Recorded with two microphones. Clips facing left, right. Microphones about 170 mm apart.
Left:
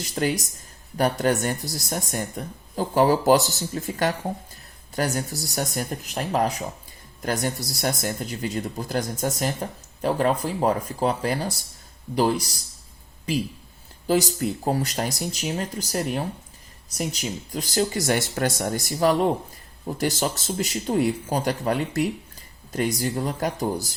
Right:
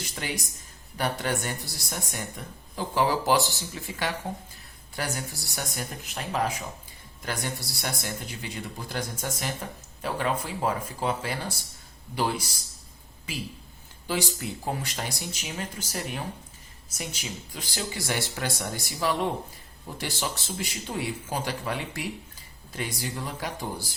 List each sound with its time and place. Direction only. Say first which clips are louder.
0.2 s speech: left 11 dB; 40° left (ahead or behind)
14.1 s speech: left 8 dB; 40° left (ahead or behind)